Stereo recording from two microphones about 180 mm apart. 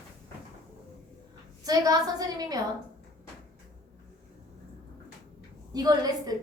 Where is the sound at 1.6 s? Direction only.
20° right (ahead or behind).